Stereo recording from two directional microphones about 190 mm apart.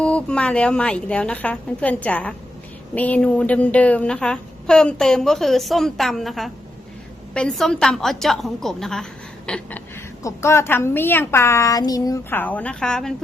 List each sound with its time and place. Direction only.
0.0 s a woman's voice: 5° left (ahead or behind)